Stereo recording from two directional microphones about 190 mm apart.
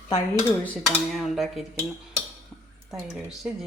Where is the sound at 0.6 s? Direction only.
Centre (ahead or behind).